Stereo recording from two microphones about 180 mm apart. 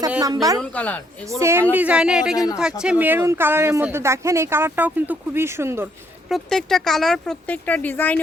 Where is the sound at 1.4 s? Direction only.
15° right (ahead or behind).